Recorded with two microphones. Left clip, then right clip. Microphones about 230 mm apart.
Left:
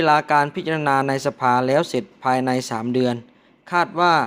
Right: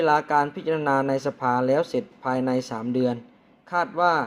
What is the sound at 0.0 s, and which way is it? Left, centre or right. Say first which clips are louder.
A man's voice: left 4 dB; left.